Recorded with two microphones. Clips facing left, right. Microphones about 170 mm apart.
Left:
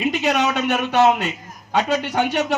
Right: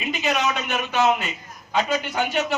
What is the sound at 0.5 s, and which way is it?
Speech, 65° left (ahead or behind).